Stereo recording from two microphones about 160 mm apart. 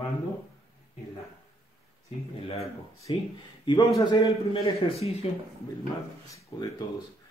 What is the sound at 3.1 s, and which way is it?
A man's voice, 30° left (ahead or behind).